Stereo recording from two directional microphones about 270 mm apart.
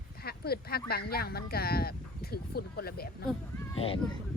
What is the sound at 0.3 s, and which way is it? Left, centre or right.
Speech, left.